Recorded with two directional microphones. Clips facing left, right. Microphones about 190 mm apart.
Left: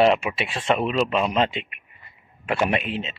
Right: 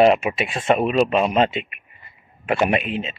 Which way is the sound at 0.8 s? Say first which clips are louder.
Right 4 dB; 15° right (ahead or behind).